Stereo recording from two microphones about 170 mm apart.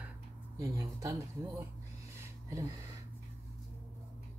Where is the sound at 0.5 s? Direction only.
20° right (ahead or behind).